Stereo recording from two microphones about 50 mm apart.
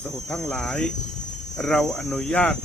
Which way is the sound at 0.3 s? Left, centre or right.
Centre.